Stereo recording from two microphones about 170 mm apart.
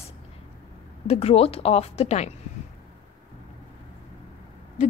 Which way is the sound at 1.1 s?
35° left (ahead or behind).